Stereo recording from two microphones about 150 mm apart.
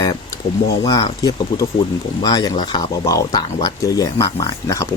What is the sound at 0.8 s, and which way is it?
Speech, 25° left (ahead or behind).